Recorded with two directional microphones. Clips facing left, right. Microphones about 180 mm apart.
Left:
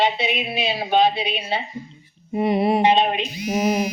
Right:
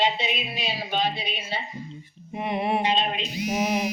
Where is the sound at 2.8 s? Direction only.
65° left (ahead or behind).